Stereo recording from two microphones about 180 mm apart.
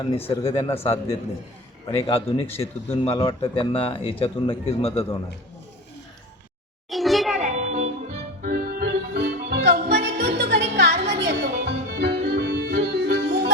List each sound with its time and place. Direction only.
0.3 s speech: 30° left (ahead or behind)
6.9 s a sound: centre (ahead or behind)
7.3 s music: 40° right (ahead or behind); by 13.5 s 70° right (ahead or behind)